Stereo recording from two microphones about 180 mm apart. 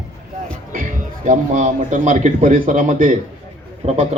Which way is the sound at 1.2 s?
45° right (ahead or behind).